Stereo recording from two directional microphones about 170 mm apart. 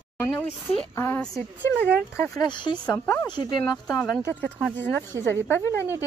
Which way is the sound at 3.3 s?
25° left (ahead or behind).